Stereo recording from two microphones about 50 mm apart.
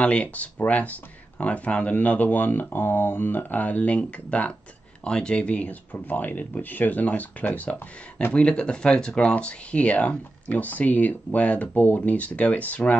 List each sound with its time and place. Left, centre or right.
0.0 s speech: left
5.0 s speech: centre